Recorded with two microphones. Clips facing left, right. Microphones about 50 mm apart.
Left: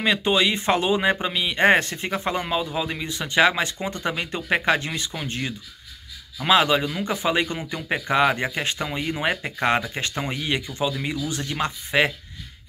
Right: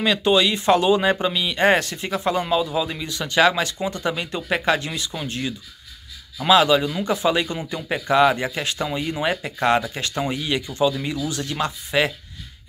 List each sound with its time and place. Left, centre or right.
0.0 s speech: left